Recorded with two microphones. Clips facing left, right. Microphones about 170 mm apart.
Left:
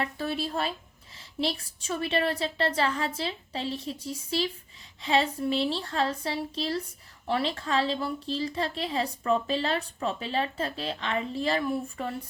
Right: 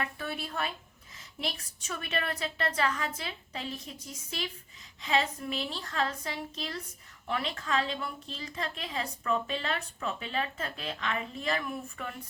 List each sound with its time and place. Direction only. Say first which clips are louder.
0.0 s a woman's voice: left 6 dB; 30° left (ahead or behind)